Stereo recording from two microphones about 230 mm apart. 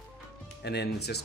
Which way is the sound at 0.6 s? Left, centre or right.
Left.